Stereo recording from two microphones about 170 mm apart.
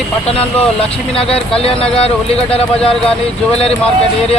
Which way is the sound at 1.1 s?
35° left (ahead or behind).